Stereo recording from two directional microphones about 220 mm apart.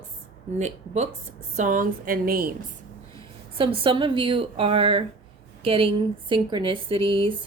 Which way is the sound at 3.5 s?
25° right (ahead or behind).